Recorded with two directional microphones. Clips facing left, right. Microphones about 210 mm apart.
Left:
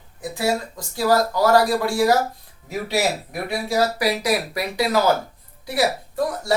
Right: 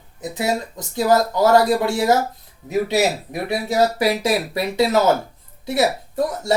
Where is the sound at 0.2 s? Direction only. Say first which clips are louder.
Even; 20° right (ahead or behind).